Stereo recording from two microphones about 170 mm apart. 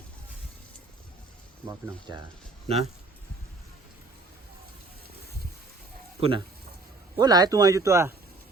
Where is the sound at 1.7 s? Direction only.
25° right (ahead or behind).